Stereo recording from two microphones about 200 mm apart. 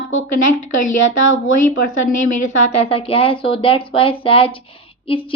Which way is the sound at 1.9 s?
40° left (ahead or behind).